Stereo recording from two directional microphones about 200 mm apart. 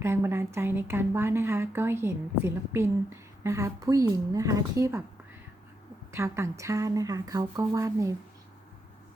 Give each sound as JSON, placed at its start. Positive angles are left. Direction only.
{"t": 0.0, "sound": "a woman's voice", "side_deg": -10}
{"t": 6.1, "sound": "a woman's voice", "side_deg": -15}